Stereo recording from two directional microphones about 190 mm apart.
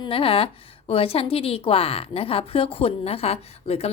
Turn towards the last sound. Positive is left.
turn(degrees=30)  # may be behind; listen again after turning